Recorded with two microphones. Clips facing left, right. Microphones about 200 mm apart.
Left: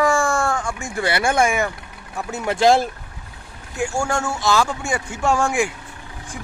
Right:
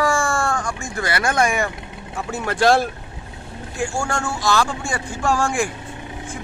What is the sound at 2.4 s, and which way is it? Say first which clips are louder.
Speech: left 1 dB; 20° left (ahead or behind).